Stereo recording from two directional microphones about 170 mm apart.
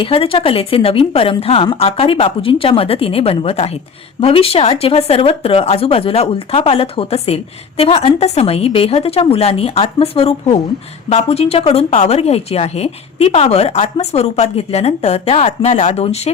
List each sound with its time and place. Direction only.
0.0 s a woman's voice: 35° left (ahead or behind)